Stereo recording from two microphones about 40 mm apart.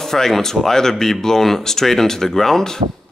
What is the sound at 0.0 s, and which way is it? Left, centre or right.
Speech, centre.